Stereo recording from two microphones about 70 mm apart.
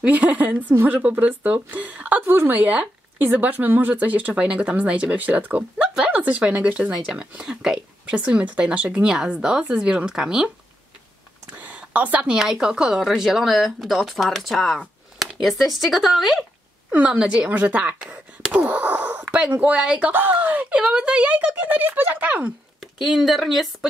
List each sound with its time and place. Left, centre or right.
0.0 s a woman's voice: right
11.5 s speech: right; by 16.4 s centre
16.9 s a woman's voice: centre
20.1 s a woman's voice: right
23.0 s speech: centre